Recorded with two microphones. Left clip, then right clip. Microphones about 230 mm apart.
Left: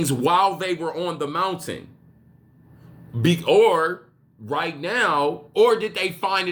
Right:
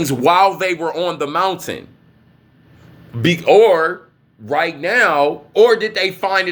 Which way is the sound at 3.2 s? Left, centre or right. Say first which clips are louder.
Right 6 dB; left.